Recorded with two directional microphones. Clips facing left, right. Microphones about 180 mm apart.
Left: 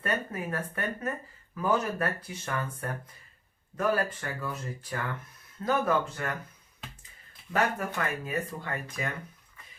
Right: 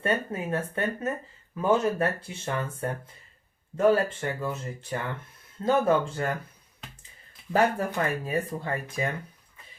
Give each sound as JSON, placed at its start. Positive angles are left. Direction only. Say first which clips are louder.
{"t": 0.0, "sound": "speech", "louder": "right 4 dB", "side_deg": -25}
{"t": 7.5, "sound": "speech", "louder": "right 5 dB", "side_deg": -30}